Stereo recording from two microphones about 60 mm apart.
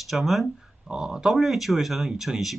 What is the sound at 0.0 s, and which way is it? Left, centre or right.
Speech, centre.